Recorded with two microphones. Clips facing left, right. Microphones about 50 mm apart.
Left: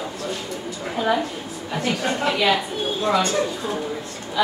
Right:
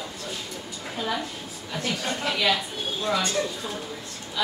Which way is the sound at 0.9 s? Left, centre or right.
Left.